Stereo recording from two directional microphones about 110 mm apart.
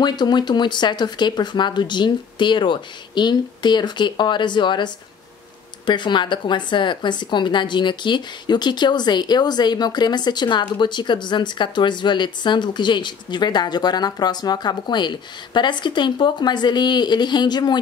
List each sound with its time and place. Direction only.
0.0 s speech: 40° left (ahead or behind)